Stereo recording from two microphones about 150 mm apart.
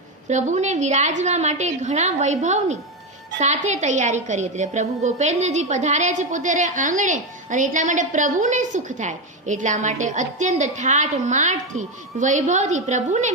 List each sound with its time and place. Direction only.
0.3 s a woman's voice: 50° right (ahead or behind)